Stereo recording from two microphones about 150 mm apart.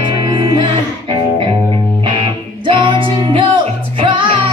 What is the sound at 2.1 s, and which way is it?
Music, 30° right (ahead or behind).